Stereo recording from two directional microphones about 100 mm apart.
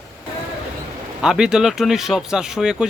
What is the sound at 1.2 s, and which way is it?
Speech, 5° right (ahead or behind).